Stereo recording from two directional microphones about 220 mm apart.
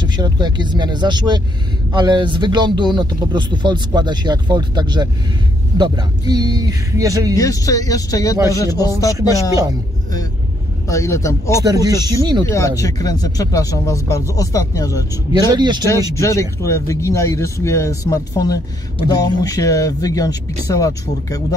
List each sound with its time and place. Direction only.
0.0 s speech: 20° right (ahead or behind)
7.3 s speech: 15° left (ahead or behind)
9.3 s speech: 15° right (ahead or behind)
10.9 s speech: 15° left (ahead or behind)
11.6 s speech: 15° right (ahead or behind)
12.4 s speech: 15° left (ahead or behind)
15.3 s speech: 20° right (ahead or behind)
15.9 s speech: 15° left (ahead or behind)